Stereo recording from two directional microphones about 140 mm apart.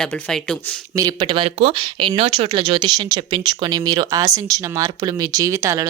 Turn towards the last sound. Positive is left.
turn(degrees=-20)  # may be behind; listen again after turning